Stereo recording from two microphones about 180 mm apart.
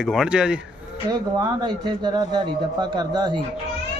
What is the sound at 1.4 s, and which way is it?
A man's voice, 20° right (ahead or behind).